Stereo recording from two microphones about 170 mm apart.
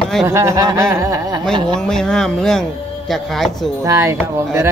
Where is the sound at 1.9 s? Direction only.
5° left (ahead or behind).